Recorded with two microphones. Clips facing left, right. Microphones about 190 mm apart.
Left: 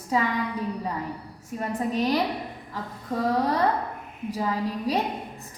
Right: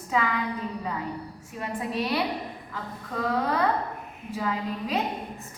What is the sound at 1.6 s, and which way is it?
Speech, 40° left (ahead or behind).